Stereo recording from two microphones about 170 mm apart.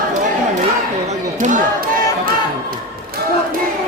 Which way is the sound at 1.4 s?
50° right (ahead or behind).